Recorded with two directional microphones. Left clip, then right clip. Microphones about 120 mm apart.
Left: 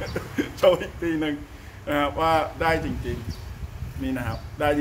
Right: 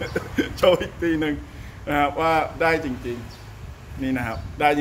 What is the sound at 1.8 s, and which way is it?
Speech, 35° right (ahead or behind).